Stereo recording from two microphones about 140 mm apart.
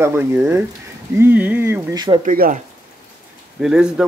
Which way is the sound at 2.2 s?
75° right (ahead or behind).